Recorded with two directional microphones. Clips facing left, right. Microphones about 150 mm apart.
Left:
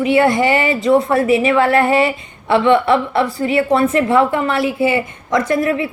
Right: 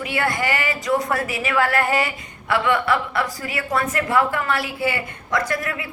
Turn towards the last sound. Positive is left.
turn(degrees=25)  # may be behind; listen again after turning